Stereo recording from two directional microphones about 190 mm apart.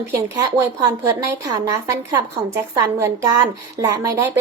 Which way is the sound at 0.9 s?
15° right (ahead or behind).